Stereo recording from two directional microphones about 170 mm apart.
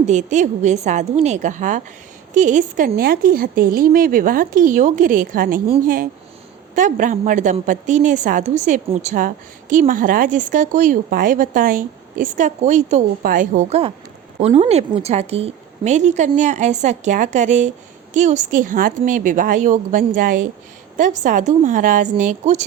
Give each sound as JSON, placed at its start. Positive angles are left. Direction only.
{"t": 0.0, "sound": "a woman's voice", "side_deg": -45}